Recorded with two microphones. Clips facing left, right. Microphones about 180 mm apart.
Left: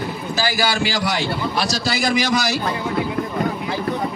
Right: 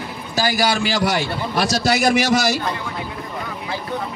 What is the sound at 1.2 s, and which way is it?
Speech, 55° right (ahead or behind).